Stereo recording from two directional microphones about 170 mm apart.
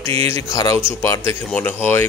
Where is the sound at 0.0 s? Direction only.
15° left (ahead or behind).